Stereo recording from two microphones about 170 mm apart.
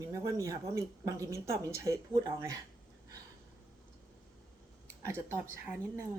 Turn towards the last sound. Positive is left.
turn(degrees=-15)  # may be behind; listen again after turning